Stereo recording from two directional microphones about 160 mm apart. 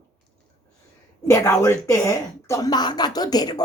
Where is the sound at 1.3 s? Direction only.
20° left (ahead or behind).